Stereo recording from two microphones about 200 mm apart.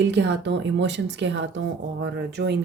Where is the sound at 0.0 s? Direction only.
60° right (ahead or behind).